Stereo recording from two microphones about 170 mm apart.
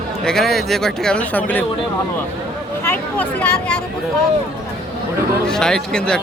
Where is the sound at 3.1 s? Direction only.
5° left (ahead or behind).